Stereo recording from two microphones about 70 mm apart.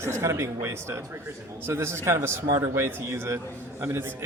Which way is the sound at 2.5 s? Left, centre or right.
Right.